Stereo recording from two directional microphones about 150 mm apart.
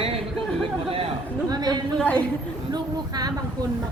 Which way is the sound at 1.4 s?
25° right (ahead or behind).